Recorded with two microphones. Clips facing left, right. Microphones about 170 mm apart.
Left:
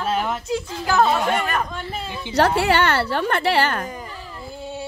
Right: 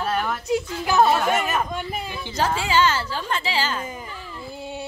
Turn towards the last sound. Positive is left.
turn(degrees=60)  # may be behind; listen again after turning